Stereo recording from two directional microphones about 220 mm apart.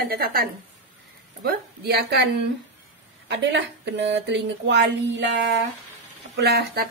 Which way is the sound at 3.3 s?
50° right (ahead or behind).